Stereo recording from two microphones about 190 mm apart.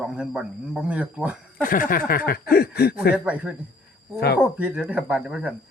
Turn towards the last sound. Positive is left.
turn(degrees=-5)  # may be behind; listen again after turning